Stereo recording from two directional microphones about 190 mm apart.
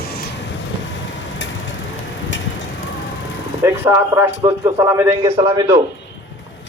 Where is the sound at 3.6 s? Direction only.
15° right (ahead or behind).